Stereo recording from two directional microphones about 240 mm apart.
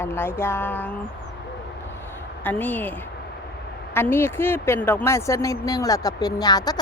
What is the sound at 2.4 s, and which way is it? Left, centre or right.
Speech, centre.